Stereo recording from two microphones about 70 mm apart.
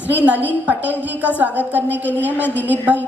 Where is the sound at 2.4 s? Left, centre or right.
Left.